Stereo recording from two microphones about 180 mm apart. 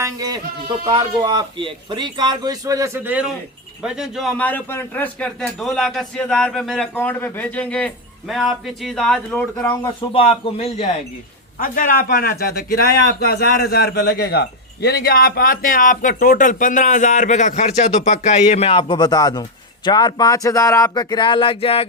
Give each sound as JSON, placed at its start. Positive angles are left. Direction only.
{"t": 0.0, "sound": "sheep", "side_deg": -20}
{"t": 0.9, "sound": "speech", "side_deg": -25}
{"t": 9.8, "sound": "speech", "side_deg": 30}
{"t": 11.6, "sound": "a man's voice", "side_deg": 50}